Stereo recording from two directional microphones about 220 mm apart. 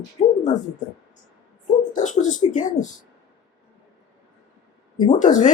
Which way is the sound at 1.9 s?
35° left (ahead or behind).